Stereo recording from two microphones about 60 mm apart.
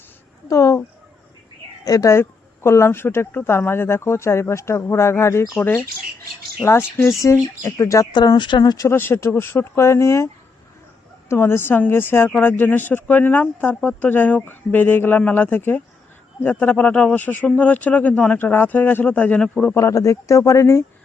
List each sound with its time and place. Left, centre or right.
0.4 s speech: left
1.8 s a woman's voice: left
2.1 s speech: left
6.6 s speech: left
8.9 s speech: left
11.3 s speech: left
19.1 s speech: centre
19.7 s speech: left